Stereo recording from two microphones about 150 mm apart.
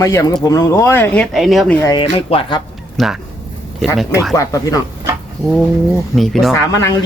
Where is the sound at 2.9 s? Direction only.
Centre (ahead or behind).